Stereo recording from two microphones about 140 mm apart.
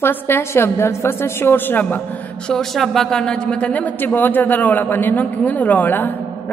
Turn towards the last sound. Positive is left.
turn(degrees=15)  # may be behind; listen again after turning